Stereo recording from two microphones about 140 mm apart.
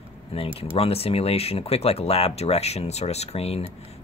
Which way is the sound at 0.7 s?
45° left (ahead or behind).